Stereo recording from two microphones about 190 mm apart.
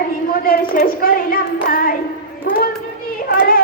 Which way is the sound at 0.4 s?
50° left (ahead or behind).